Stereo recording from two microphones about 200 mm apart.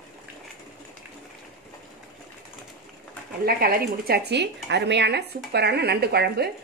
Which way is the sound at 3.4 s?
50° right (ahead or behind).